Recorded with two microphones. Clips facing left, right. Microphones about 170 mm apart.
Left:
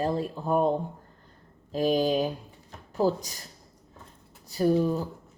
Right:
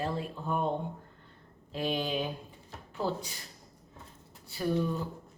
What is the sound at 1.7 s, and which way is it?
A woman's voice, 40° left (ahead or behind).